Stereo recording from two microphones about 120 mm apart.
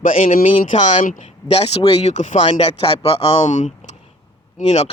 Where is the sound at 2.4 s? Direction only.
50° left (ahead or behind).